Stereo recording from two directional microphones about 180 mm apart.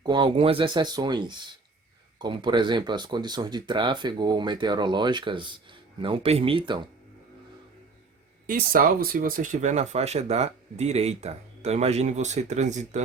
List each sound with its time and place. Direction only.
0.0 s speech: 25° right (ahead or behind)
8.4 s speech: 50° right (ahead or behind)